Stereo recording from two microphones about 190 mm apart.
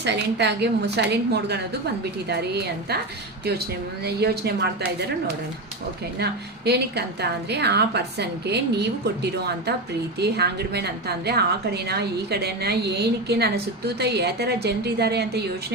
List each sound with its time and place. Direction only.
0.0 s a woman's voice: 65° right (ahead or behind)
4.0 s a woman's voice: 60° right (ahead or behind)
6.7 s a woman's voice: 60° right (ahead or behind)